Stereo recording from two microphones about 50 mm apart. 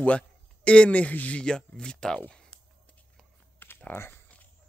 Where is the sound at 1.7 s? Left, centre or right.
Centre.